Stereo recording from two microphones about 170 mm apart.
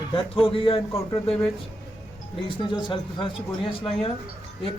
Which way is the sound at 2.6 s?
30° left (ahead or behind).